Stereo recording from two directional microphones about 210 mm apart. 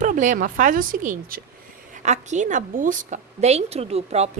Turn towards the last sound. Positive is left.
turn(degrees=-30)  # may be behind; listen again after turning